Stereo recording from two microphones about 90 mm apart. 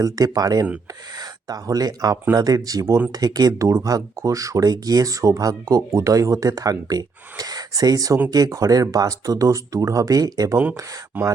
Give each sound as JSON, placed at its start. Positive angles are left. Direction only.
{"t": 0.0, "sound": "speech", "side_deg": -40}